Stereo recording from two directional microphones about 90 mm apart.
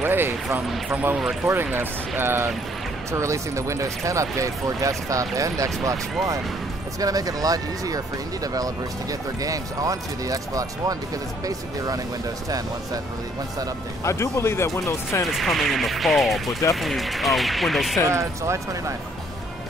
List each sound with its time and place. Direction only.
0.0 s speech: 25° right (ahead or behind)
1.1 s speech: 5° right (ahead or behind)
1.5 s speech: 20° right (ahead or behind); by 5.9 s 40° right (ahead or behind)
7.0 s speech: 45° right (ahead or behind)
14.0 s speech: 35° left (ahead or behind)
15.2 s speech: centre (ahead or behind)
18.1 s speech: 35° right (ahead or behind)